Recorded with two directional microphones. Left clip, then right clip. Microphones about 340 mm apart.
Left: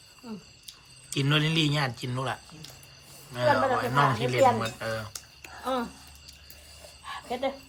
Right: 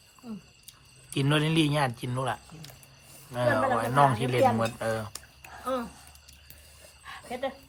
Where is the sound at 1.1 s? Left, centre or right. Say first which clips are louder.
Even; centre.